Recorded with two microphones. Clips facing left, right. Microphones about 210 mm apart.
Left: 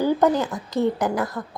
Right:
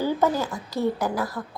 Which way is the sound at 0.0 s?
15° left (ahead or behind).